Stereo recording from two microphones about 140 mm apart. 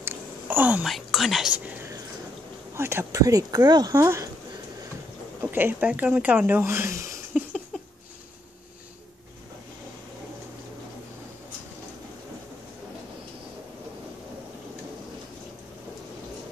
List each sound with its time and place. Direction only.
0.0 s a sound: 15° right (ahead or behind)
0.8 s speech: centre (ahead or behind)
2.7 s speech: 15° right (ahead or behind)
5.4 s speech: 15° right (ahead or behind)